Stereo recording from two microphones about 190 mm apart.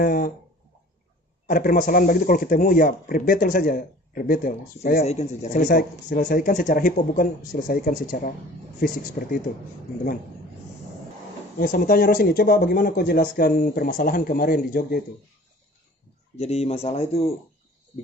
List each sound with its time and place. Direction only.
0.0 s speech: 50° left (ahead or behind)
1.5 s speech: 50° left (ahead or behind)
5.0 s speech: 35° left (ahead or behind)
11.6 s speech: 50° left (ahead or behind)
16.4 s speech: 35° left (ahead or behind)